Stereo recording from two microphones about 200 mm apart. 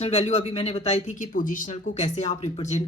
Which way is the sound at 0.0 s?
30° left (ahead or behind).